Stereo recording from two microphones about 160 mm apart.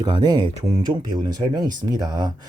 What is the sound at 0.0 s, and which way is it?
Speech, 25° right (ahead or behind).